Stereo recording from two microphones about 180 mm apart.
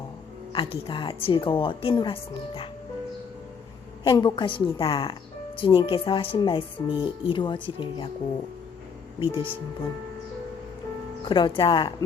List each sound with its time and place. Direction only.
0.5 s speech: 30° left (ahead or behind)
4.0 s speech: 30° left (ahead or behind)
9.3 s speech: 30° left (ahead or behind)
11.3 s speech: 25° left (ahead or behind)